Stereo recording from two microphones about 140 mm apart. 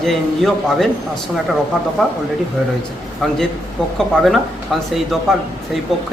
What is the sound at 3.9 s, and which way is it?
A man's voice, centre (ahead or behind).